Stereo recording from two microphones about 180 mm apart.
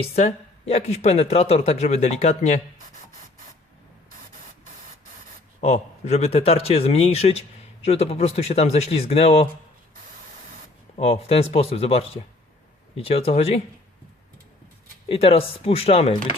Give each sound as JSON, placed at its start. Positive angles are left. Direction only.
{"t": 0.0, "sound": "speech", "side_deg": 35}
{"t": 5.5, "sound": "speech", "side_deg": 35}
{"t": 10.9, "sound": "speech", "side_deg": 35}
{"t": 15.1, "sound": "speech", "side_deg": 30}